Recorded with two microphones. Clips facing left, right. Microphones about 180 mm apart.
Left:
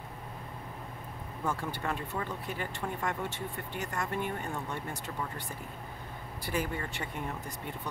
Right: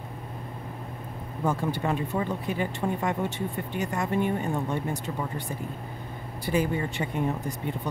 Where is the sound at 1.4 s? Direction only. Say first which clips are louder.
Right 7 dB; 20° right (ahead or behind).